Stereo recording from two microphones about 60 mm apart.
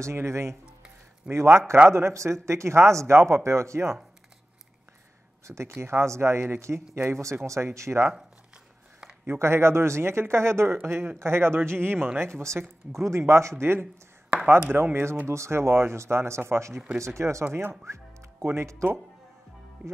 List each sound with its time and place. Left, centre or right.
0.0 s speech: right
5.7 s speech: right
9.2 s speech: right
12.2 s speech: right
17.5 s speech: right
17.8 s speech: right